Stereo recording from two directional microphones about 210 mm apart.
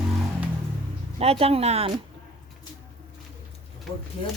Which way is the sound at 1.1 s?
30° right (ahead or behind).